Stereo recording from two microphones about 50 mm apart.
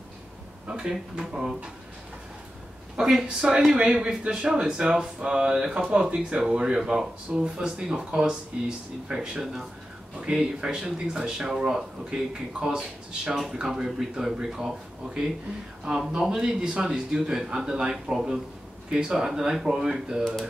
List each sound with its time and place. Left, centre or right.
0.7 s speech: centre
3.0 s speech: centre
3.7 s a man's voice: centre